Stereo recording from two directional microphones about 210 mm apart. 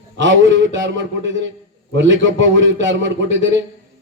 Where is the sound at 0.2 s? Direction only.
60° right (ahead or behind).